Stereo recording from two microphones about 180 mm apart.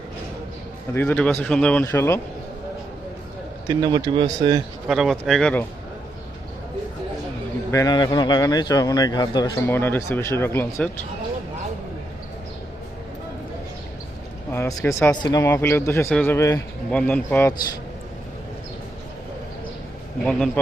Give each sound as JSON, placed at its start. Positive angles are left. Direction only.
{"t": 0.9, "sound": "speech", "side_deg": 10}
{"t": 3.7, "sound": "speech", "side_deg": -20}
{"t": 4.9, "sound": "speech", "side_deg": 0}
{"t": 7.7, "sound": "a man's voice", "side_deg": 20}
{"t": 14.5, "sound": "a man's voice", "side_deg": 15}